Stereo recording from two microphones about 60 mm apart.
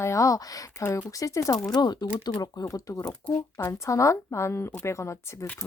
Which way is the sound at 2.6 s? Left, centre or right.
Left.